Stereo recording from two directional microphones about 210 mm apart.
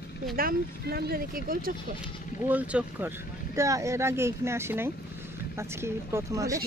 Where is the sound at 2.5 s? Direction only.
5° right (ahead or behind).